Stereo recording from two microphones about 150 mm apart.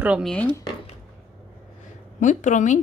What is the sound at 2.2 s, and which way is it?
Speech, 55° left (ahead or behind).